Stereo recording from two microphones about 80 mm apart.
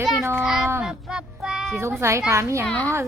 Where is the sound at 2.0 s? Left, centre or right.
Right.